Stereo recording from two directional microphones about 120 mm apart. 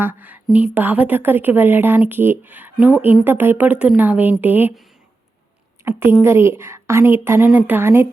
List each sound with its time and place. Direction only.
0.0 s a woman's voice: 15° right (ahead or behind)
5.9 s a woman's voice: 20° right (ahead or behind)